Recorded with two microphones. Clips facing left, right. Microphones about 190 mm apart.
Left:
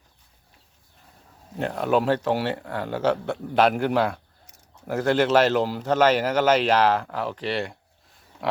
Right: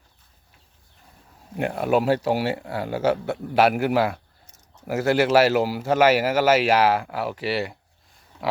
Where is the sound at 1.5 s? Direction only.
10° right (ahead or behind).